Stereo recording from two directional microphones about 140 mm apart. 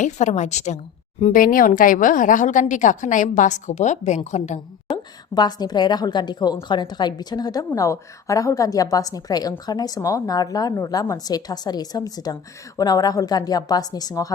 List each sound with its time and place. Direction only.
0.0 s a woman's voice: 55° left (ahead or behind)
1.3 s a woman's voice: 90° left; by 4.6 s 55° left (ahead or behind)
4.9 s a woman's voice: 30° left (ahead or behind)